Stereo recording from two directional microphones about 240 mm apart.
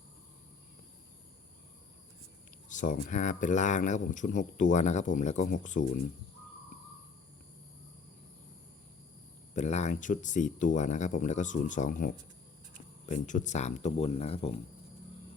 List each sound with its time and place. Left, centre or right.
2.6 s speech: left
9.6 s speech: left